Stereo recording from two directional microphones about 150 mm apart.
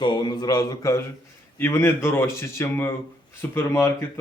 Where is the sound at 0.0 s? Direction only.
30° left (ahead or behind).